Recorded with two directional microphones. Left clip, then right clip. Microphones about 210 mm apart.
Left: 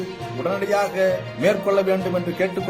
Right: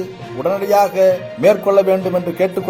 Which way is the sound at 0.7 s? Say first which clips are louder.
Right 8 dB; 25° right (ahead or behind).